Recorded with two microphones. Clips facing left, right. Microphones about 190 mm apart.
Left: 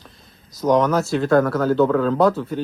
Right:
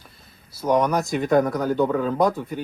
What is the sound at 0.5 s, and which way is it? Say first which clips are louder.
Speech: left 3 dB; 10° right (ahead or behind).